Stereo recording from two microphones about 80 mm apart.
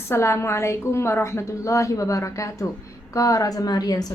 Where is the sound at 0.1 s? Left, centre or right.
Left.